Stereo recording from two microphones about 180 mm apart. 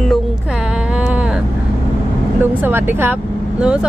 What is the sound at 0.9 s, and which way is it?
Vehicle, 5° right (ahead or behind).